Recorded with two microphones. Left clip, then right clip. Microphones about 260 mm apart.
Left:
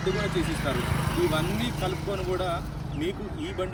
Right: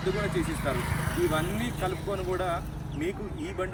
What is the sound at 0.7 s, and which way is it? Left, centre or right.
Speech, left.